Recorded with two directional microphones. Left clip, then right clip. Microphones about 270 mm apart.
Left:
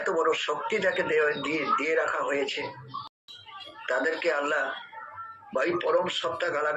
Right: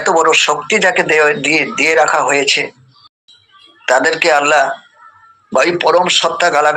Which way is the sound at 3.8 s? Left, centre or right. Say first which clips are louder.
Right 15 dB; right.